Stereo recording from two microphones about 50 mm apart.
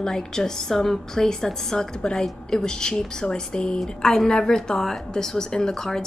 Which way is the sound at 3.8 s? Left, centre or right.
Centre.